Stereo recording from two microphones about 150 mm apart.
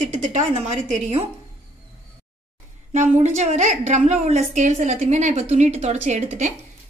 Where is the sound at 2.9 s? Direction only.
55° right (ahead or behind).